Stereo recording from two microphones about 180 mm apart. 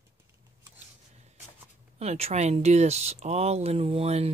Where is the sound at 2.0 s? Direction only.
35° right (ahead or behind).